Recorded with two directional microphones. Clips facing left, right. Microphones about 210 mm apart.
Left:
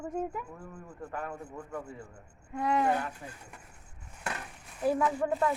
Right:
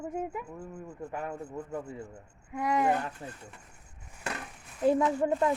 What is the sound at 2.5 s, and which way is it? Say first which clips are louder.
Speech: even; 15° right (ahead or behind).